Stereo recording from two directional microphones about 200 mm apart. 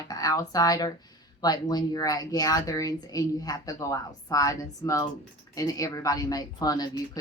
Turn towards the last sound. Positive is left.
turn(degrees=20)  # may be behind; listen again after turning